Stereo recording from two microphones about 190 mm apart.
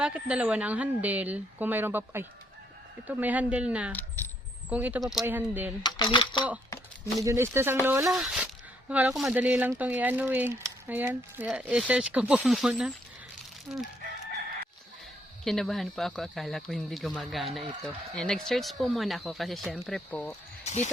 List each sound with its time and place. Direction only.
0.0 s speech: 5° right (ahead or behind)
5.8 s speech: 20° left (ahead or behind)
6.7 s a sound: 15° left (ahead or behind)
7.3 s speech: 15° right (ahead or behind)
8.1 s speech: centre (ahead or behind)
15.4 s speech: centre (ahead or behind)
20.7 s speech: 35° left (ahead or behind)